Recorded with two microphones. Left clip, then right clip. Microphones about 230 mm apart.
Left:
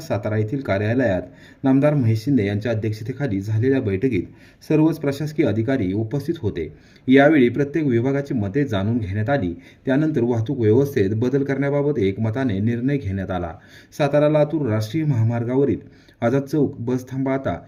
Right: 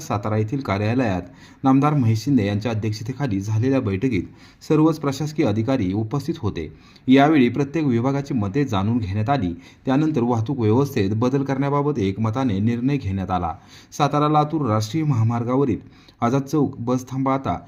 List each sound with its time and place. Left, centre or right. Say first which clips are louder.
0.1 s speech: left 1 dB; centre
16.8 s speech: right 2 dB; centre